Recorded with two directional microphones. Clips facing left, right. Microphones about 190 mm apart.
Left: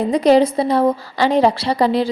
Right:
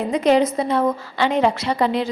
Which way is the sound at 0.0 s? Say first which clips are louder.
Left 4 dB; 35° left (ahead or behind).